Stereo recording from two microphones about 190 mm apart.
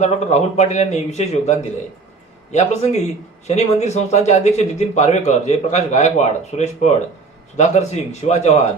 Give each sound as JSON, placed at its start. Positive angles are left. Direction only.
{"t": 0.0, "sound": "a man's voice", "side_deg": 35}